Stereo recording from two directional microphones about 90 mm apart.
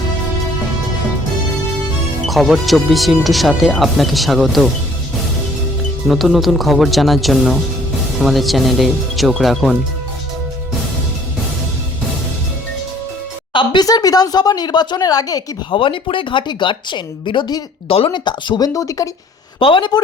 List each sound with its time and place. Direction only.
2.2 s speech: centre (ahead or behind)
6.1 s speech: centre (ahead or behind)
13.5 s a sound: 70° left (ahead or behind)
13.8 s a woman's voice: 45° left (ahead or behind)
15.7 s speech: 75° left (ahead or behind); by 18.7 s 55° left (ahead or behind)
18.7 s speech: 35° left (ahead or behind)
19.5 s speech: 75° left (ahead or behind)